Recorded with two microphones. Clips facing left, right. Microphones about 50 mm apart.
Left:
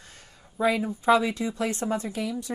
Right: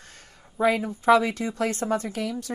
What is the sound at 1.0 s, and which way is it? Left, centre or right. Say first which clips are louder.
Speech: right 2 dB; right.